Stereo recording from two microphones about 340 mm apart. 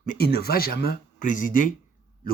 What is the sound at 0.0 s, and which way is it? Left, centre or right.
Speech, left.